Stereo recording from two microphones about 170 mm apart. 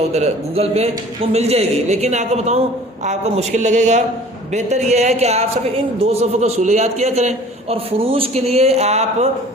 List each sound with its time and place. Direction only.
0.1 s speech: 40° right (ahead or behind)